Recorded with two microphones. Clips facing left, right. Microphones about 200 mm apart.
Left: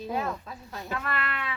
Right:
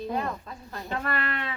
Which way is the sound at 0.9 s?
35° right (ahead or behind).